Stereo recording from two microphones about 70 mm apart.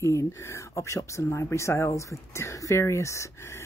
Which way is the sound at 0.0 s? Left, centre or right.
Left.